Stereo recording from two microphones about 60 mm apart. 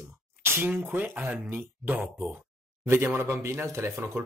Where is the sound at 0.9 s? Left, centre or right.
Right.